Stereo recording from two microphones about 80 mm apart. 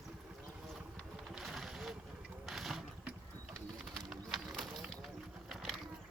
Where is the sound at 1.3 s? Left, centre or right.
Centre.